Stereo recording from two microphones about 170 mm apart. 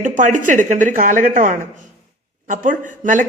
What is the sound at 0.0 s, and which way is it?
A woman's voice, 50° right (ahead or behind).